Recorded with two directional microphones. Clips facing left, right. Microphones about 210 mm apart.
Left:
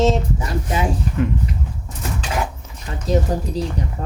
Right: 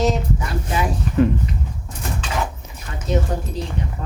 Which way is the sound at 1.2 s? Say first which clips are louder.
Right 6 dB; 35° right (ahead or behind).